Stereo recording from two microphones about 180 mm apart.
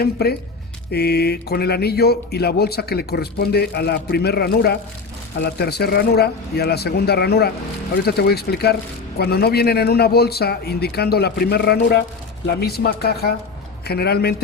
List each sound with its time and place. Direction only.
0.0 s speech: 60° left (ahead or behind)